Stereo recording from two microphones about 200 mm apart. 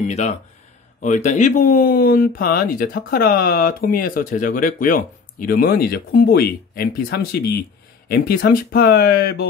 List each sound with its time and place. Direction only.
0.0 s speech: 35° left (ahead or behind)